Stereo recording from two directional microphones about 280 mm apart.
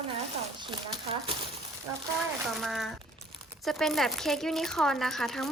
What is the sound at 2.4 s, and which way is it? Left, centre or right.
Speech, centre.